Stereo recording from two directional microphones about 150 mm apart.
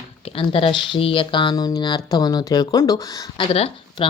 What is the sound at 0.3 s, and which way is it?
Speech, 35° left (ahead or behind).